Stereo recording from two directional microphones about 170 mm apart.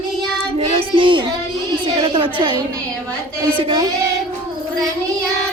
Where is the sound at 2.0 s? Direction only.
30° right (ahead or behind).